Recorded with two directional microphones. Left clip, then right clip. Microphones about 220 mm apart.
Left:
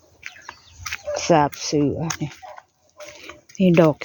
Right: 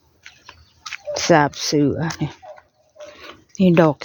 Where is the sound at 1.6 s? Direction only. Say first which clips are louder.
Right 3 dB; 25° right (ahead or behind).